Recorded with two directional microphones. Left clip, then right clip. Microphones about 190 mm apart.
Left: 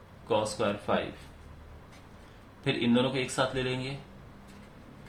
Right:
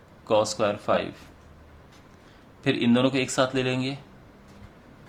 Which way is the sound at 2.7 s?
50° right (ahead or behind).